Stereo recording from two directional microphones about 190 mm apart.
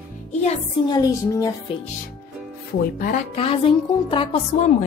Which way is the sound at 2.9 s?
50° left (ahead or behind).